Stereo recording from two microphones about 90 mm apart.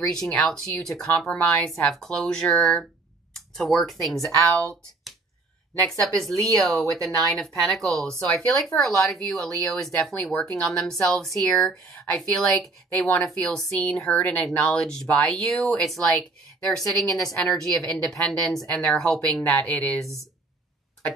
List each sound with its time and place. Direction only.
0.0 s speech: 5° left (ahead or behind)